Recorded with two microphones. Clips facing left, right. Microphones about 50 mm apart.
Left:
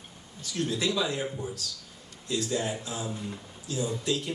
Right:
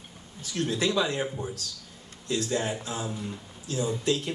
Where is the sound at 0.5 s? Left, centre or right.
Right.